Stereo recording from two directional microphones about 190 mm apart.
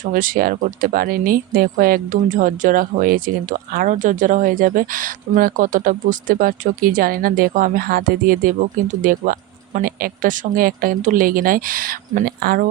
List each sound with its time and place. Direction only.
0.0 s speech: 45° right (ahead or behind)